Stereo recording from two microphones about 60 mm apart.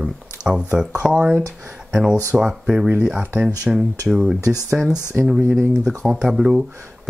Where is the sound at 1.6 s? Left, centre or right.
Right.